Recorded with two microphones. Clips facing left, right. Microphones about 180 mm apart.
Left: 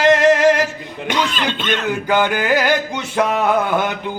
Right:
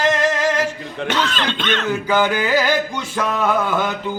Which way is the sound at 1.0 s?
10° left (ahead or behind).